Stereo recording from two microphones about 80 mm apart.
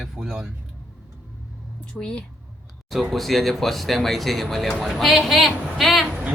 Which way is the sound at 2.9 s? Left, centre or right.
Centre.